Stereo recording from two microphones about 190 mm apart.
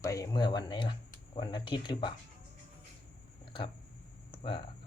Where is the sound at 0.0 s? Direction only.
15° left (ahead or behind).